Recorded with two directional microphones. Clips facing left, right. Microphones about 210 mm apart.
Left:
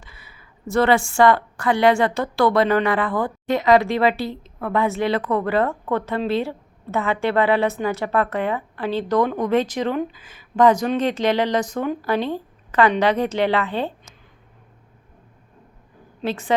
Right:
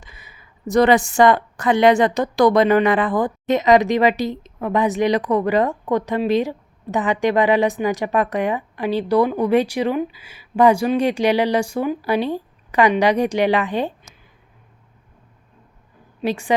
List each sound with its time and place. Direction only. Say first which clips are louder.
0.0 s a woman's voice: right 1 dB; 20° right (ahead or behind)
16.2 s a woman's voice: right 2 dB; 15° right (ahead or behind)